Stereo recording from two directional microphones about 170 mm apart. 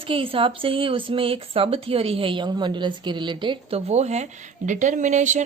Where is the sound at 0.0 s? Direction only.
30° right (ahead or behind).